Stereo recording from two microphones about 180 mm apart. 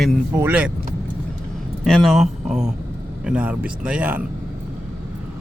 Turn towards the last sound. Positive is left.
turn(degrees=-5)  # may be behind; listen again after turning